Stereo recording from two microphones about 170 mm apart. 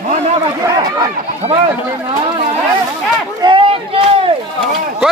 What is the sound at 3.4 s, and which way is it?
Speech, 30° right (ahead or behind).